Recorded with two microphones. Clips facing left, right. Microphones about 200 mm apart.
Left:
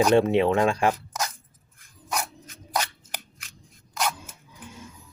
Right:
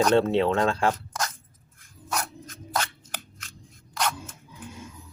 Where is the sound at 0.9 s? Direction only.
10° left (ahead or behind).